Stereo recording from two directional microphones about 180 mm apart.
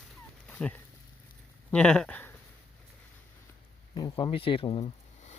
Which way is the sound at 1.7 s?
5° left (ahead or behind).